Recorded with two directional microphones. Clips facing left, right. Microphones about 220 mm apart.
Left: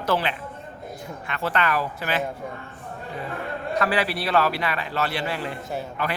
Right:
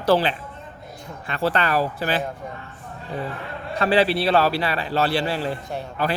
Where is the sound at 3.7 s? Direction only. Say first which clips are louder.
Right 6 dB; 30° right (ahead or behind).